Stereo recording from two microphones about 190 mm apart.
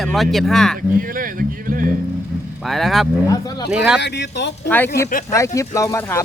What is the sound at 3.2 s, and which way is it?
Speech, 20° left (ahead or behind).